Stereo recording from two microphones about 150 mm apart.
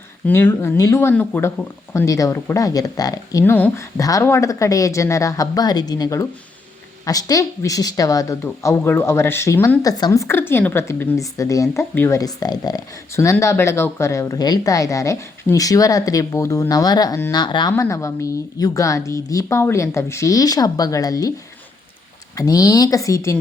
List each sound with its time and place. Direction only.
0.3 s speech: 15° left (ahead or behind); by 17.7 s 30° left (ahead or behind)
17.7 s speech: 20° left (ahead or behind)
22.4 s speech: 25° left (ahead or behind)